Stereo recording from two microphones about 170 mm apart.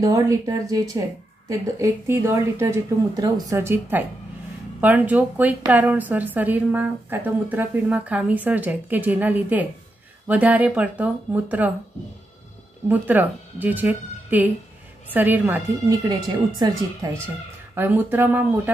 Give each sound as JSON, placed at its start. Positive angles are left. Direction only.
{"t": 0.0, "sound": "a woman's voice", "side_deg": -20}
{"t": 12.8, "sound": "a woman's voice", "side_deg": -10}
{"t": 17.7, "sound": "a woman's voice", "side_deg": -10}